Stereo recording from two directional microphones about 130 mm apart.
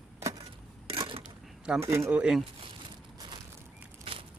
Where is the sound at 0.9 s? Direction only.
45° right (ahead or behind).